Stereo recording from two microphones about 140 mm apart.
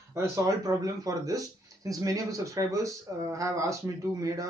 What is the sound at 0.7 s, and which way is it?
Speech, 25° right (ahead or behind).